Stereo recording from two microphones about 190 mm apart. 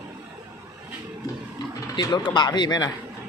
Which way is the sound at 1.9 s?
25° left (ahead or behind).